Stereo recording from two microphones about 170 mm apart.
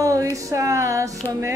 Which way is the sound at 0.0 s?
20° right (ahead or behind).